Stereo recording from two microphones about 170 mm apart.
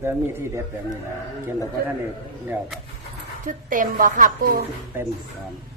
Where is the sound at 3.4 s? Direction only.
50° right (ahead or behind).